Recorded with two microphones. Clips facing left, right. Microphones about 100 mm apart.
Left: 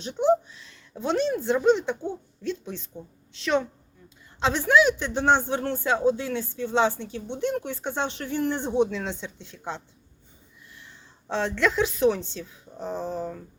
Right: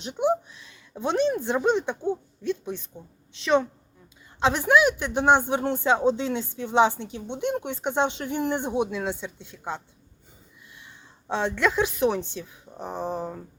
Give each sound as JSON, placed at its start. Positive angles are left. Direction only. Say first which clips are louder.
{"t": 0.0, "sound": "speech", "louder": "left 2 dB", "side_deg": -15}
{"t": 4.4, "sound": "a woman's voice", "louder": "even", "side_deg": -15}
{"t": 13.1, "sound": "a sound", "louder": "even", "side_deg": -20}